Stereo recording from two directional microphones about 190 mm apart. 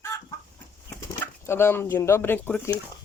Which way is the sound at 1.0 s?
10° left (ahead or behind).